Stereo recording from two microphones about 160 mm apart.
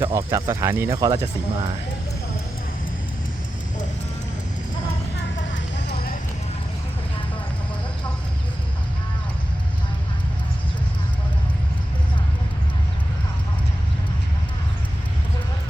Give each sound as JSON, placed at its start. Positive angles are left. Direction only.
{"t": 0.0, "sound": "speech", "side_deg": -20}
{"t": 5.9, "sound": "basketball bounce", "side_deg": 70}